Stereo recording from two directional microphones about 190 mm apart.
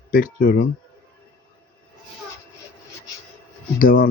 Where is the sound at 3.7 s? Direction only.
50° left (ahead or behind).